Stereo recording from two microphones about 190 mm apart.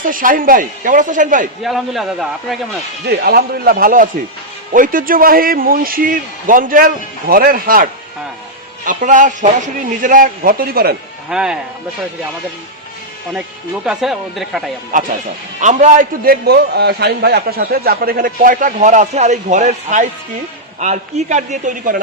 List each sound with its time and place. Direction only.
0.0 s a man's voice: 45° right (ahead or behind)
1.6 s a man's voice: centre (ahead or behind)
3.1 s a man's voice: 55° right (ahead or behind)
8.9 s a man's voice: 40° right (ahead or behind)
11.3 s a man's voice: 5° right (ahead or behind)
13.8 s a man's voice: 5° right (ahead or behind)
14.9 s a man's voice: 45° right (ahead or behind)